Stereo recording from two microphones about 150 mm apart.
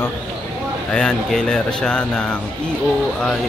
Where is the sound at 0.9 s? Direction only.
5° left (ahead or behind).